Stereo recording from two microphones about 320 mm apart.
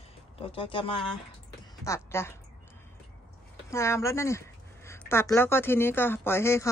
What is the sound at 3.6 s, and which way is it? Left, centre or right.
Speech, centre.